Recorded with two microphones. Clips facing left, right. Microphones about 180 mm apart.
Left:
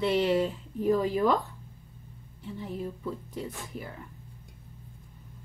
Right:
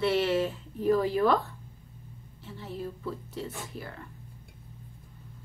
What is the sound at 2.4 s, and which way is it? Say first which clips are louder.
Speech: left 2 dB; 15° left (ahead or behind).